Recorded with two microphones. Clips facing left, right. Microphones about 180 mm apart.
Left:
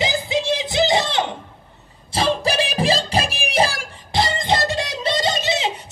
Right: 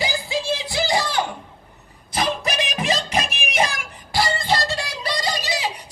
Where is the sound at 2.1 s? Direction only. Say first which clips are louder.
Left 4 dB; 30° left (ahead or behind).